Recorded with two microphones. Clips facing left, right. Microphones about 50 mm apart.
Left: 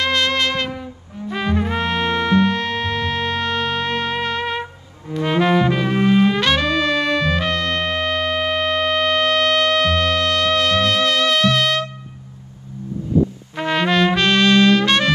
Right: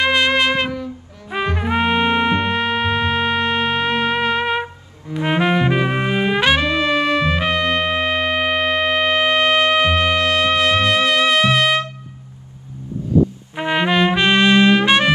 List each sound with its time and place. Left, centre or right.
0.0 s music: centre
13.6 s trumpet: centre